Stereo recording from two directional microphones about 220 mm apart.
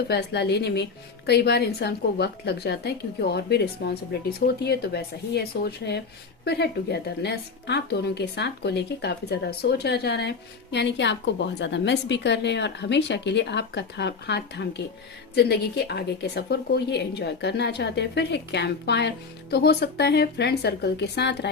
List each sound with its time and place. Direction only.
0.1 s a woman's voice: 50° left (ahead or behind)